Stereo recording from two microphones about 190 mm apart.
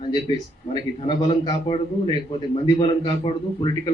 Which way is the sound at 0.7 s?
25° left (ahead or behind).